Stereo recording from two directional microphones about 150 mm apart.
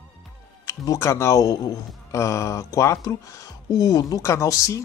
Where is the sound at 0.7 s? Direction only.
20° left (ahead or behind).